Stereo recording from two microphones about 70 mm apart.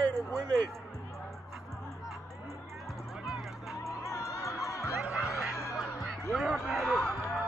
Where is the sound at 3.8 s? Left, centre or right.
Left.